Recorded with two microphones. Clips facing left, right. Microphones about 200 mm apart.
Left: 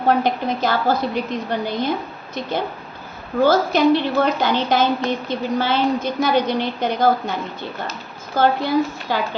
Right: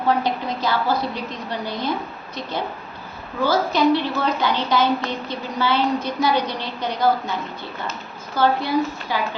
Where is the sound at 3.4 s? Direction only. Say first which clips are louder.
Left 3 dB; 50° left (ahead or behind).